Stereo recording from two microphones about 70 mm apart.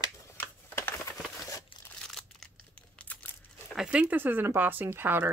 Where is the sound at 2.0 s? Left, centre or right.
Centre.